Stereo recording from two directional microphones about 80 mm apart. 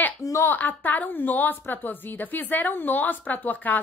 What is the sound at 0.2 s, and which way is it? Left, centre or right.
Speech, left.